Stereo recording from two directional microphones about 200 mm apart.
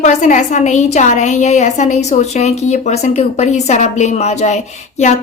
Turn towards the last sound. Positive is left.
turn(degrees=35)  # may be behind; listen again after turning